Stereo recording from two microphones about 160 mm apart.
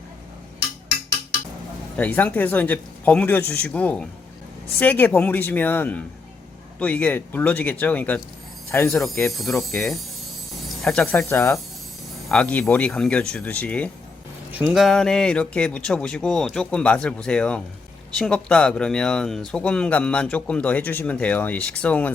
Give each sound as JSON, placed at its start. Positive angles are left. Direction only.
{"t": 2.0, "sound": "speech", "side_deg": 10}
{"t": 9.4, "sound": "speech", "side_deg": 0}